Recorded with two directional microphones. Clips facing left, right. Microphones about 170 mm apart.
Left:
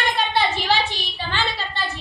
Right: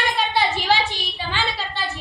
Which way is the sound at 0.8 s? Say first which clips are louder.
Even; 15° right (ahead or behind).